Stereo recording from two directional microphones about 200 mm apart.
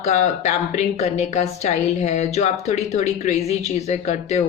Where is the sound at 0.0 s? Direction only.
35° left (ahead or behind).